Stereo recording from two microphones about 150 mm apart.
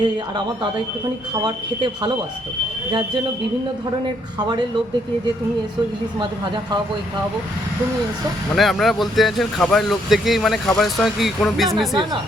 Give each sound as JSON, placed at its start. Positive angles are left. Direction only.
{"t": 0.0, "sound": "speech", "side_deg": -30}
{"t": 4.4, "sound": "speech", "side_deg": -30}
{"t": 8.5, "sound": "speech", "side_deg": 0}